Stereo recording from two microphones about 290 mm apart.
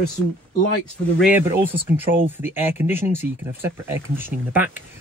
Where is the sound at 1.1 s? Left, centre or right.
Centre.